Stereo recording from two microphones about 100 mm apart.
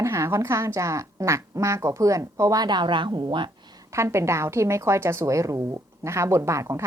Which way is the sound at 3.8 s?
30° right (ahead or behind).